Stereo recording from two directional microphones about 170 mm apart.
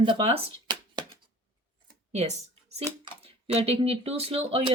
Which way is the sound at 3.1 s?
35° right (ahead or behind).